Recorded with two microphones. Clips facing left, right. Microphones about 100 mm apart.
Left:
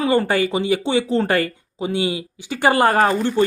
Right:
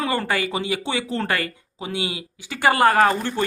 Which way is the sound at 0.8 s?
20° left (ahead or behind).